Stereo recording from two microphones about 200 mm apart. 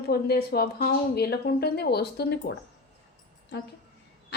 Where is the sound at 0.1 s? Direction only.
50° left (ahead or behind).